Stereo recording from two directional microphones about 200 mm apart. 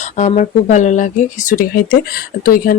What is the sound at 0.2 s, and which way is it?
Speech, 35° left (ahead or behind).